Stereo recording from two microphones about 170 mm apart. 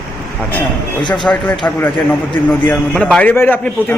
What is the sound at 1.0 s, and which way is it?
Speech, 25° left (ahead or behind).